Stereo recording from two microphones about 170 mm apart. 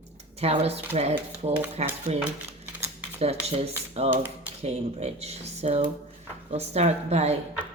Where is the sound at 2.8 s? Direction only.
35° right (ahead or behind).